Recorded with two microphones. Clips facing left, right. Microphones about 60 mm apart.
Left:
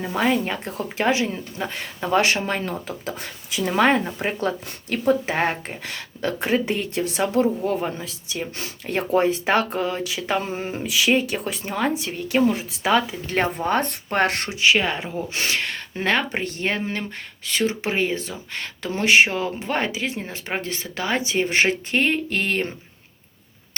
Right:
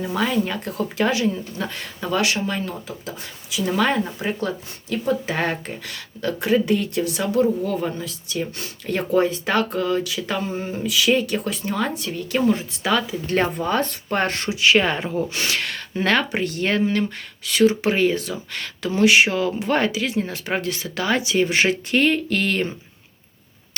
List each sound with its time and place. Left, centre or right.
0.0 s speech: left
2.0 s speech: left
5.2 s speech: left
10.4 s speech: left
10.8 s speech: left
13.3 s speech: left
14.2 s speech: left
14.8 s speech: centre
15.4 s speech: left
17.9 s speech: centre
19.6 s speech: centre
19.9 s speech: left